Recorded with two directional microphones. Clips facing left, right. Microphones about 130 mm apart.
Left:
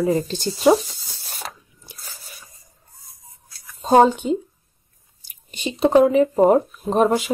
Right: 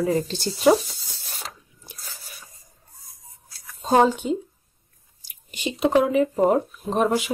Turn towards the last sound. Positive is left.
turn(degrees=40)  # may be behind; listen again after turning